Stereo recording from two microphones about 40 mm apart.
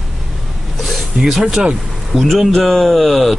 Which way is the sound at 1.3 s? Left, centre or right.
Centre.